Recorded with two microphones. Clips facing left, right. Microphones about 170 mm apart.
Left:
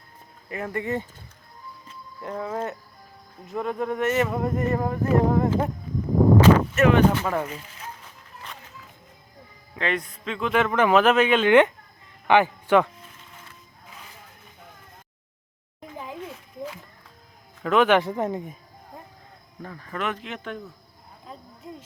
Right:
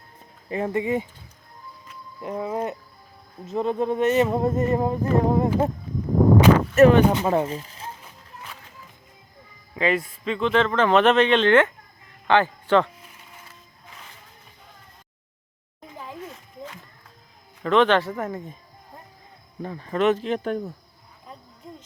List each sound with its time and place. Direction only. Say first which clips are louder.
0.5 s speech: right 4 dB; 25° right (ahead or behind)
2.2 s speech: right 2 dB; 15° right (ahead or behind)
6.7 s speech: right 5 dB; 35° right (ahead or behind)
7.1 s speech: right 4 dB; 20° right (ahead or behind)
9.7 s a man's voice: right 4 dB; 5° right (ahead or behind); by 12.9 s 10° left (ahead or behind)
17.6 s speech: right 1 dB; 5° left (ahead or behind)
19.6 s speech: right 9 dB; 25° right (ahead or behind); by 20.7 s 40° right (ahead or behind)
21.6 s a sound: left 2 dB; 5° left (ahead or behind)